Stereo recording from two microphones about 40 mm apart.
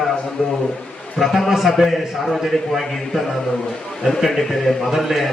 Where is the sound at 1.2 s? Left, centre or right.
Centre.